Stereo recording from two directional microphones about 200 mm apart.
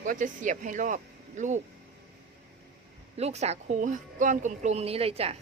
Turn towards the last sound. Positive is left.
turn(degrees=-30)  # may be behind; listen again after turning